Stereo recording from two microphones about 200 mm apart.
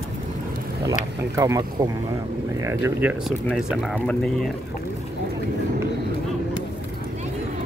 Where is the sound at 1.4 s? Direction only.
15° right (ahead or behind); by 4.4 s centre (ahead or behind).